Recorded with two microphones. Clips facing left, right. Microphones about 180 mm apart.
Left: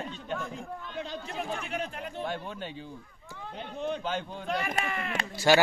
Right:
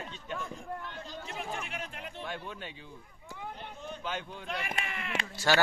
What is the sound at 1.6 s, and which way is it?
Speech, 40° left (ahead or behind).